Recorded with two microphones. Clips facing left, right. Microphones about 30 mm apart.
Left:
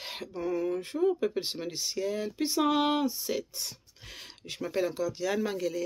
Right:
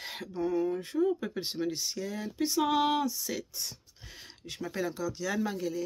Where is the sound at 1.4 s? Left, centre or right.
Left.